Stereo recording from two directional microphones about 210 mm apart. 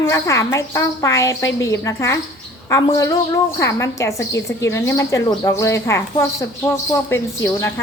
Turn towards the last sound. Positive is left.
turn(degrees=15)  # may be behind; listen again after turning